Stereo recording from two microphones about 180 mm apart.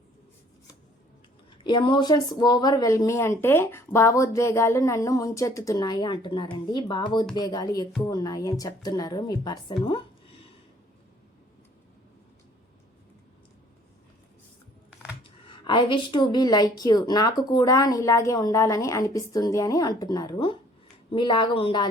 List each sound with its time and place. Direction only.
1.6 s speech: 25° left (ahead or behind)
15.4 s speech: 25° left (ahead or behind)